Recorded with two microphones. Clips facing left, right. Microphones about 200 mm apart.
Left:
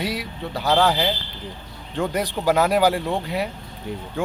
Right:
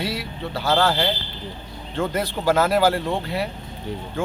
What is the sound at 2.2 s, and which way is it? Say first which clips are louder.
Speech: even; 15° left (ahead or behind).